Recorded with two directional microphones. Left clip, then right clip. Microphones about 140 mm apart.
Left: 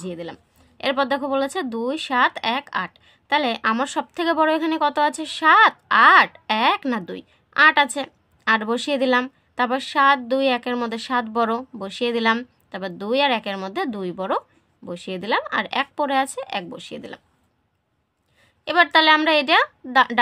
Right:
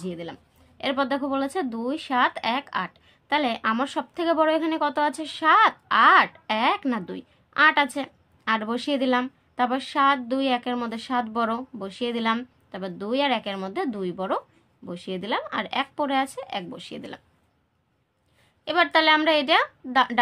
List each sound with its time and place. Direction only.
0.0 s a woman's voice: 35° left (ahead or behind)
18.6 s a woman's voice: 45° left (ahead or behind)